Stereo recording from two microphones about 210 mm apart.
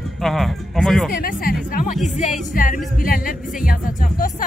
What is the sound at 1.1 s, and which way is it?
Speech, 45° left (ahead or behind).